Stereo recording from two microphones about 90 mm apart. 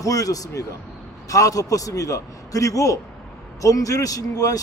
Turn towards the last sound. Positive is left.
turn(degrees=40)  # may be behind; listen again after turning